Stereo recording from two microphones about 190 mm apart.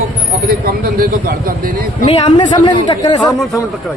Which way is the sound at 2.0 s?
25° left (ahead or behind).